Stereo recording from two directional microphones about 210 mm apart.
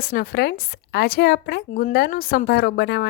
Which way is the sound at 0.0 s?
50° left (ahead or behind).